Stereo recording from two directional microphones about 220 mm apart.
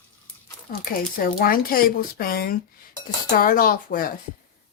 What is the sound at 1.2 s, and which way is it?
Speech, 40° left (ahead or behind).